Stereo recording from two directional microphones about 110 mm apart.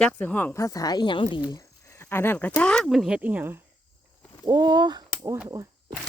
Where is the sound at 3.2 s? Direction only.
15° right (ahead or behind).